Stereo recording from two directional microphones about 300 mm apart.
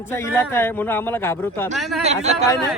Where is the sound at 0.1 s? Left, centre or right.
Centre.